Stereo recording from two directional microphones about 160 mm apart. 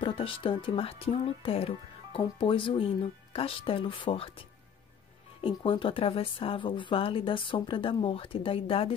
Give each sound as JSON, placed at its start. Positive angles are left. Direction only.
{"t": 0.0, "sound": "speech", "side_deg": 35}